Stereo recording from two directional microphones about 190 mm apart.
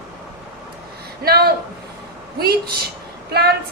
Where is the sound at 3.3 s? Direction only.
55° right (ahead or behind).